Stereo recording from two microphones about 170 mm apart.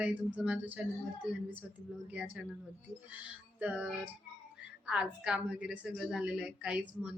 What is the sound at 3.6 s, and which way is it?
Female singing, 10° right (ahead or behind).